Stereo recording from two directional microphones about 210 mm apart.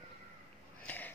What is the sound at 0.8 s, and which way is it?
Wheeze, 10° left (ahead or behind).